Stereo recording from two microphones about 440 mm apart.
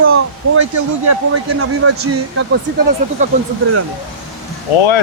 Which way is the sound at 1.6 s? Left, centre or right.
Right.